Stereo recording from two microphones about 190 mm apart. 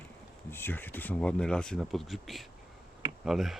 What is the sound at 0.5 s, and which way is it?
Speech, 10° left (ahead or behind).